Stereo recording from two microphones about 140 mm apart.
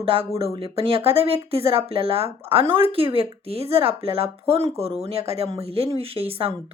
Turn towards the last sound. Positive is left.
turn(degrees=-45)  # may be behind; listen again after turning